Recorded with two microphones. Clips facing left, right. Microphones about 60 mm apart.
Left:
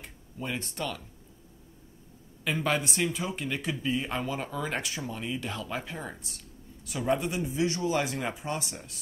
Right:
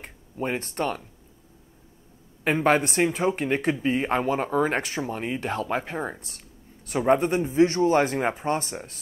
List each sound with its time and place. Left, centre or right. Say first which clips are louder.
0.0 s speech: right 8 dB; right
2.4 s speech: right 8 dB; right